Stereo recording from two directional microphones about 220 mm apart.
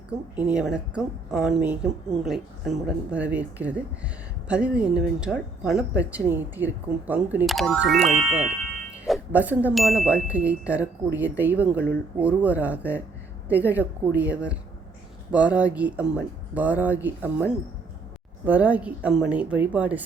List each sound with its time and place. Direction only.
0.3 s a woman's voice: 5° right (ahead or behind)
7.9 s speech: 30° right (ahead or behind)
8.3 s a woman's voice: 5° right (ahead or behind)